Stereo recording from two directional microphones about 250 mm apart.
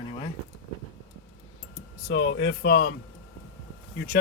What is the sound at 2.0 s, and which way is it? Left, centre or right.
Speech, left.